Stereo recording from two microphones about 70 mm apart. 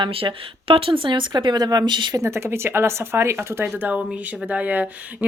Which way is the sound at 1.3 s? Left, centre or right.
Right.